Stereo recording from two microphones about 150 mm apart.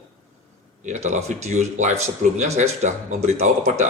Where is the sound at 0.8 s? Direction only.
55° right (ahead or behind).